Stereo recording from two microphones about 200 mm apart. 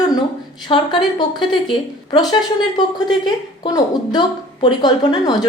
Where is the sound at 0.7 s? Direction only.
25° left (ahead or behind).